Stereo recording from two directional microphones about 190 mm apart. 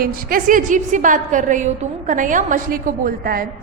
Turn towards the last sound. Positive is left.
turn(degrees=-50)  # may be behind; listen again after turning